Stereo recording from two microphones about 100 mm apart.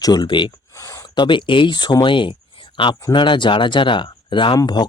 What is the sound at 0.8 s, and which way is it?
Speech, 35° left (ahead or behind).